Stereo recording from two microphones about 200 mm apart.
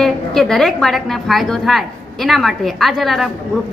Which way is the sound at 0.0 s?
Centre (ahead or behind).